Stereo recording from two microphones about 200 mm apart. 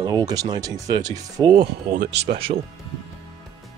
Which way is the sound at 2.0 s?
60° right (ahead or behind).